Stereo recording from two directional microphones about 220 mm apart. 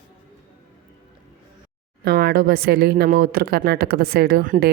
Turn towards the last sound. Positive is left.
turn(degrees=-40)  # may be behind; listen again after turning